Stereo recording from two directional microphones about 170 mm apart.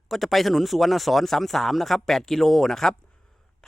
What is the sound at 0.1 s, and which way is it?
Speech, centre (ahead or behind).